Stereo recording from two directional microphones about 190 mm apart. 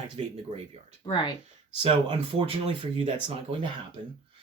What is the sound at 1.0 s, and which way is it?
Speech, 25° left (ahead or behind).